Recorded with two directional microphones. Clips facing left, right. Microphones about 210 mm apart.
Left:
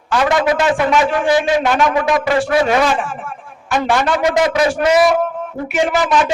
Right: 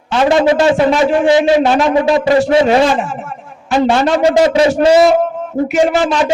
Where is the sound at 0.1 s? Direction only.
25° right (ahead or behind).